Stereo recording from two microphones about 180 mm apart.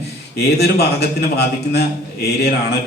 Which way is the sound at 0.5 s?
65° left (ahead or behind).